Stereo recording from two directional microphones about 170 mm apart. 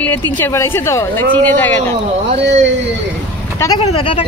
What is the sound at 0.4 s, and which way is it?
Speech, 15° left (ahead or behind).